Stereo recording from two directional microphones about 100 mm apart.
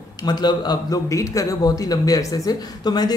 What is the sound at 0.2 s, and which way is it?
Speech, 45° left (ahead or behind).